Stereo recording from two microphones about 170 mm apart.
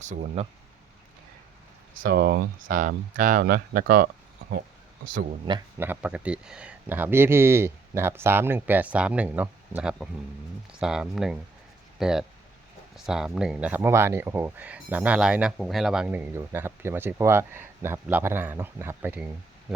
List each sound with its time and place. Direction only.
0.0 s speech: 45° right (ahead or behind)
2.0 s speech: 60° right (ahead or behind)
2.7 s speech: 50° right (ahead or behind)
5.0 s speech: 55° right (ahead or behind)
5.5 s speech: 20° right (ahead or behind)